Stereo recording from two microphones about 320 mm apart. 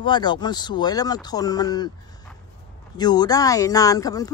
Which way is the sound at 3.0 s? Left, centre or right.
Centre.